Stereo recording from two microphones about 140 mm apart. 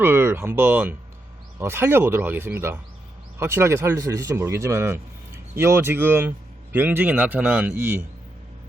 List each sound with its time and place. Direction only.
0.0 s a man's voice: 15° right (ahead or behind)